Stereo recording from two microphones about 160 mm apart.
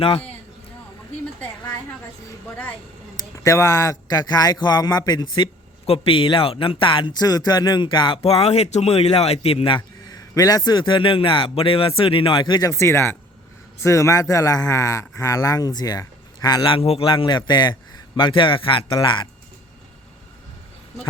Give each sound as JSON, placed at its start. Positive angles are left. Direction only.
{"t": 0.0, "sound": "a man's voice", "side_deg": 35}
{"t": 3.2, "sound": "a man's voice", "side_deg": 20}